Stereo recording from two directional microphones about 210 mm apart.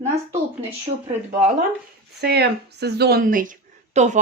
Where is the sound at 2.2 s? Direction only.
50° right (ahead or behind).